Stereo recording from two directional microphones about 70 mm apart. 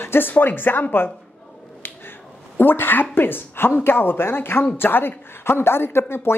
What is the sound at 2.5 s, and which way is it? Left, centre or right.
A woman's voice, left.